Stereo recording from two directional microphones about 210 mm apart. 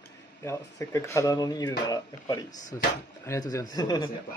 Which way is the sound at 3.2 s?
15° left (ahead or behind).